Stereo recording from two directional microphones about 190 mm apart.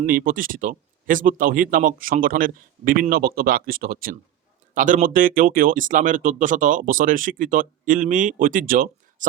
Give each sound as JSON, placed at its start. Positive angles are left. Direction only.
{"t": 0.0, "sound": "speech", "side_deg": -50}